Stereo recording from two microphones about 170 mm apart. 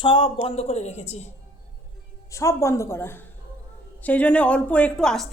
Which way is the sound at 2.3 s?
15° left (ahead or behind).